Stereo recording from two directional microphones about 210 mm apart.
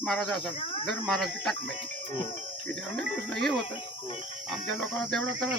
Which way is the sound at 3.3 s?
Centre (ahead or behind).